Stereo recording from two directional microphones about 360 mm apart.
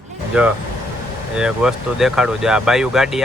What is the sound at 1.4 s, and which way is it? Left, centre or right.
Speech, centre.